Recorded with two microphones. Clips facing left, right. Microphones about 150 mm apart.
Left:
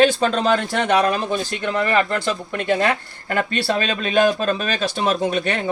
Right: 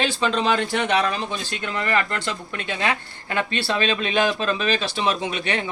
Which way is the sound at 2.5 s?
50° left (ahead or behind).